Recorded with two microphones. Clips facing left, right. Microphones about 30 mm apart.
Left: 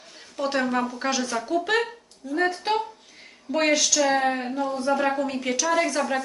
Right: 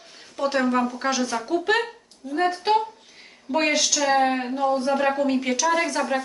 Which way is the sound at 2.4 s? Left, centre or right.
Centre.